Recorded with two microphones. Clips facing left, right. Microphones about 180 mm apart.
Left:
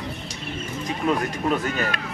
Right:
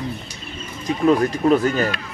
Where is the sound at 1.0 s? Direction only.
40° right (ahead or behind).